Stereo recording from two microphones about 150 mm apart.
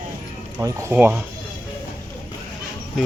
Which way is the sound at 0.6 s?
20° right (ahead or behind).